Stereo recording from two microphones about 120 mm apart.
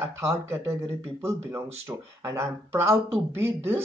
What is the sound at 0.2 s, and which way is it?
Speech, 25° right (ahead or behind).